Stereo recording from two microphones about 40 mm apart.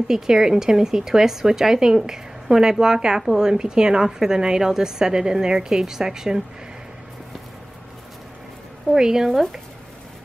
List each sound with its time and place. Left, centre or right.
0.1 s a woman's voice: centre
8.9 s a woman's voice: centre